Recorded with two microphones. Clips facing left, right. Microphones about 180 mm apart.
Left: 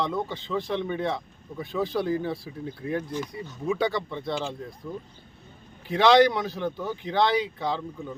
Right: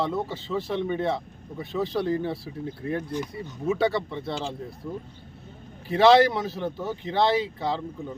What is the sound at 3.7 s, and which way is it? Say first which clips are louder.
Speech: right 2 dB; centre (ahead or behind).